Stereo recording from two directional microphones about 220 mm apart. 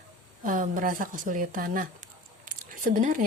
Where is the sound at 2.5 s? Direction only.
35° right (ahead or behind).